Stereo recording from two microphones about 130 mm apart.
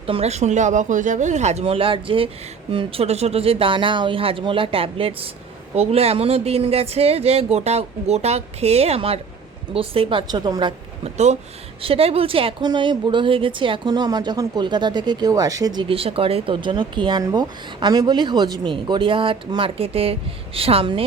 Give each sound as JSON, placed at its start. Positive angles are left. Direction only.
{"t": 0.0, "sound": "speech", "side_deg": -50}
{"t": 11.0, "sound": "speech", "side_deg": -60}
{"t": 11.8, "sound": "speech", "side_deg": -45}